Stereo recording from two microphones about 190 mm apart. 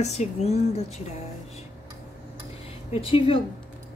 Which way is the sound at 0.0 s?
35° left (ahead or behind).